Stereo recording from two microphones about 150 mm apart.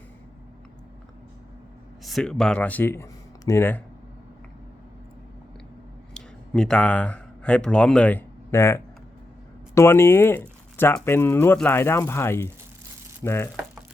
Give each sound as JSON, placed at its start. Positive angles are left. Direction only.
{"t": 2.0, "sound": "speech", "side_deg": 0}
{"t": 6.1, "sound": "speech", "side_deg": 5}